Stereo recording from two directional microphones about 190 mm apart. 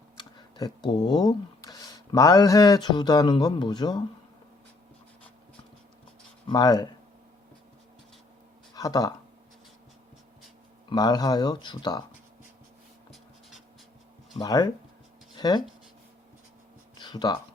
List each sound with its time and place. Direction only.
0.2 s speech: 25° left (ahead or behind)
6.5 s speech: 20° left (ahead or behind)
8.7 s speech: 20° left (ahead or behind)
10.8 s speech: 20° left (ahead or behind)
14.3 s speech: 20° left (ahead or behind)
17.0 s a sound: 20° left (ahead or behind)